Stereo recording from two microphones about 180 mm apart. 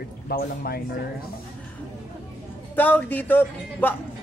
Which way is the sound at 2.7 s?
10° left (ahead or behind).